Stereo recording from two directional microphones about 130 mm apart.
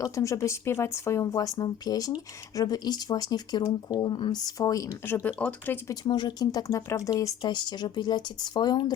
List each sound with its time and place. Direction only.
0.0 s speech: 25° left (ahead or behind)
5.2 s speech: 10° left (ahead or behind)
5.9 s speech: 35° left (ahead or behind)